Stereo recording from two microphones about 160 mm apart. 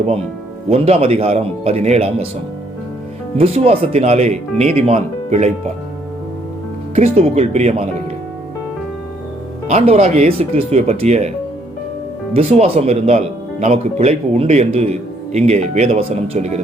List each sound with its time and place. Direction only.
0.7 s speech: 40° right (ahead or behind)
3.3 s speech: 35° right (ahead or behind)
6.9 s speech: 40° right (ahead or behind)
9.6 s speech: 40° right (ahead or behind)
12.3 s speech: 40° right (ahead or behind)